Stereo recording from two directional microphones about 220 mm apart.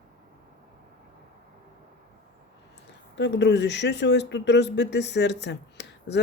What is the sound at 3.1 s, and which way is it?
Speech, 50° left (ahead or behind).